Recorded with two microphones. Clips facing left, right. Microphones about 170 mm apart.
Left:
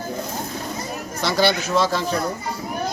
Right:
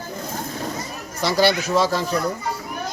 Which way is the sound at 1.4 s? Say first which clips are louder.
Right 1 dB; 40° right (ahead or behind).